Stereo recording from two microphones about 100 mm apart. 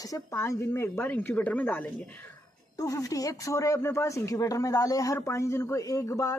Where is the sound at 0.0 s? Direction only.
35° left (ahead or behind); by 2.0 s 15° left (ahead or behind).